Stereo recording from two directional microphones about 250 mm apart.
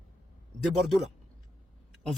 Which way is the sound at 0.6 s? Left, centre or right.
Centre.